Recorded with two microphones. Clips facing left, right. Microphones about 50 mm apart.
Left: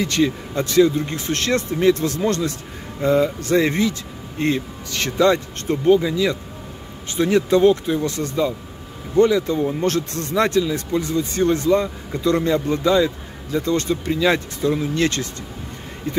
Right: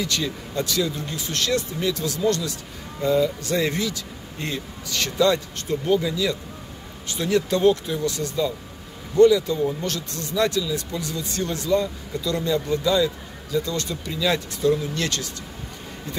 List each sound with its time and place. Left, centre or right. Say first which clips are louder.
0.0 s speech: left 7 dB; left
5.9 s speech: left 6 dB; centre